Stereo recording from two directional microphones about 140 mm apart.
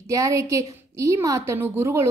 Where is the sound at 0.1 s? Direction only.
20° right (ahead or behind).